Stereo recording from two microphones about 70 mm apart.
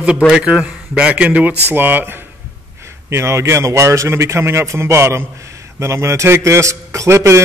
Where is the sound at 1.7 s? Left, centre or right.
Right.